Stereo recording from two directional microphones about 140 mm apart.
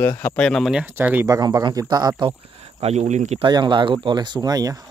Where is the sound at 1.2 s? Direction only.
30° right (ahead or behind); by 3.3 s 55° right (ahead or behind).